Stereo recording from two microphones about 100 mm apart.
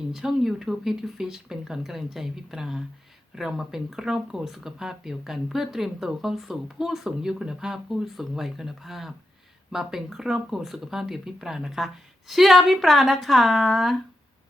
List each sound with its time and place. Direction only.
0.1 s speech: 5° right (ahead or behind)